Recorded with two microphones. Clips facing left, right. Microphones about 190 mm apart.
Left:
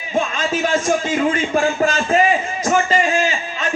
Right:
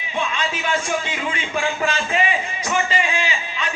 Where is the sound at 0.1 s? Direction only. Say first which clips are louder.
Left 5 dB; 45° left (ahead or behind).